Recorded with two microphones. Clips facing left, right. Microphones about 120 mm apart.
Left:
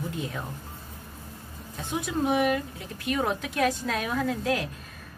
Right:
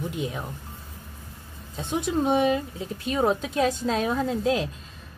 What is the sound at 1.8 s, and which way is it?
A woman's voice, 25° right (ahead or behind).